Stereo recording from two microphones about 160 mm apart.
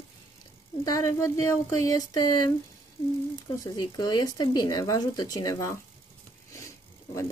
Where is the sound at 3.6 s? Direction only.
25° left (ahead or behind).